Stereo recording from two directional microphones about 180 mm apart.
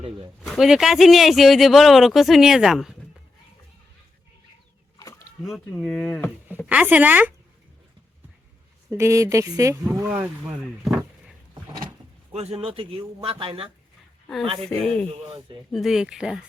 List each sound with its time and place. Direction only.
0.4 s speech: centre (ahead or behind)
5.5 s speech: centre (ahead or behind)
6.7 s speech: 10° right (ahead or behind)
8.9 s speech: 15° right (ahead or behind)
12.3 s a man's voice: 35° right (ahead or behind)
14.8 s speech: 5° left (ahead or behind)
15.1 s speech: 30° right (ahead or behind)
15.7 s speech: centre (ahead or behind)